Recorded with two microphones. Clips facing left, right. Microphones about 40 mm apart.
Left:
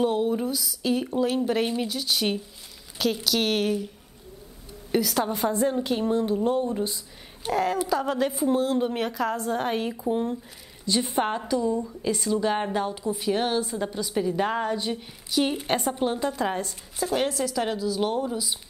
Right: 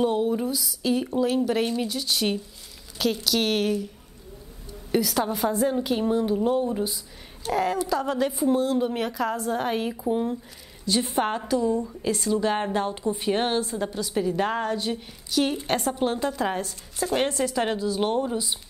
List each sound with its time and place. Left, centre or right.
0.0 s a woman's voice: centre
4.9 s a woman's voice: centre
12.8 s speech: right
13.7 s a woman's voice: centre
17.1 s speech: centre